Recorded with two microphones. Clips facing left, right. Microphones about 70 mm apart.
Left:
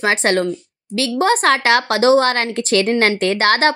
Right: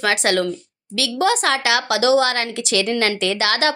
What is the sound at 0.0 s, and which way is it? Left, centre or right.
A woman's voice, left.